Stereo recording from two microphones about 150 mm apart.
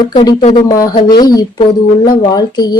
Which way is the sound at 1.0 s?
25° left (ahead or behind).